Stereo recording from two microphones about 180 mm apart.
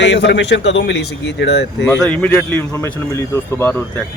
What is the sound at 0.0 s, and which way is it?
Speech, 75° left (ahead or behind).